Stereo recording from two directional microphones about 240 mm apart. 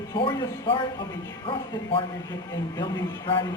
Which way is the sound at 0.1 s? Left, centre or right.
Centre.